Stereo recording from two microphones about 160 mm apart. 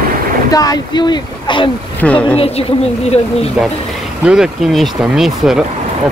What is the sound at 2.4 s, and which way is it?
A woman's voice, 40° left (ahead or behind).